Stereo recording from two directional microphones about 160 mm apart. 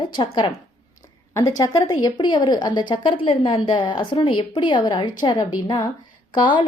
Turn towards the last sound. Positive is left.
turn(degrees=30)  # may be behind; listen again after turning